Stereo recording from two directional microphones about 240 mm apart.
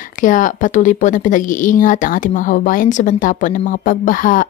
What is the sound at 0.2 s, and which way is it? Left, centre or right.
Speech, left.